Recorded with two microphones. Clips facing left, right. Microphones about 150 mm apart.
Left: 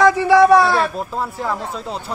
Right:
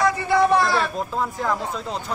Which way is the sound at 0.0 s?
85° left.